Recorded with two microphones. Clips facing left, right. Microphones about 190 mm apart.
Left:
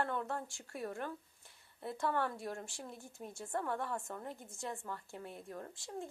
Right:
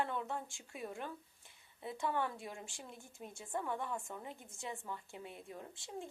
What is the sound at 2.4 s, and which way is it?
Speech, centre (ahead or behind).